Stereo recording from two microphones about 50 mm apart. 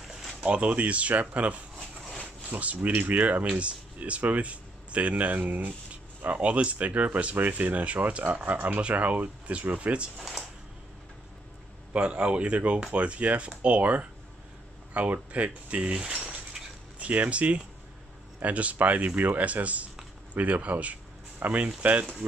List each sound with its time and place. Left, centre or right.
0.5 s speech: right
10.1 s speech: centre
11.9 s speech: right
15.0 s a sound: right
17.1 s speech: right